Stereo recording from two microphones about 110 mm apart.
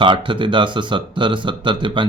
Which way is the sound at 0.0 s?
50° right (ahead or behind).